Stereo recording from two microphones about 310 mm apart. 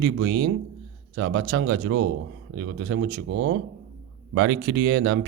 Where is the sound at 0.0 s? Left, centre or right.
Right.